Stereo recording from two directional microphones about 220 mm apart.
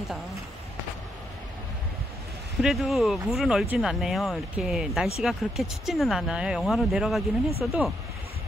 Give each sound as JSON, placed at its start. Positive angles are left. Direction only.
{"t": 2.6, "sound": "speech", "side_deg": 0}